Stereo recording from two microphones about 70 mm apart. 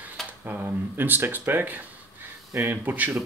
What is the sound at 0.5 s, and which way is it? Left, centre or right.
Speech, right.